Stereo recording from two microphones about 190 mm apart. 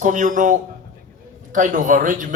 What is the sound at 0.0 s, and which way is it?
Speech, 45° right (ahead or behind).